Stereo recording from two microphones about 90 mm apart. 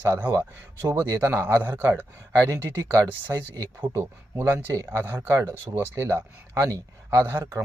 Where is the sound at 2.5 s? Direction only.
40° right (ahead or behind).